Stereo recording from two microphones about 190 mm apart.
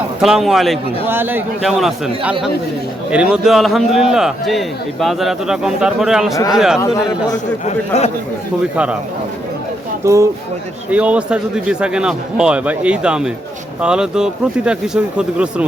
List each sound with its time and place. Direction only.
0.2 s a man's voice: centre (ahead or behind)
1.0 s a man's voice: 10° right (ahead or behind)
6.7 s a man's voice: 20° left (ahead or behind)
7.6 s speech: 35° left (ahead or behind)
8.7 s a man's voice: 5° right (ahead or behind)
10.0 s a man's voice: 15° right (ahead or behind)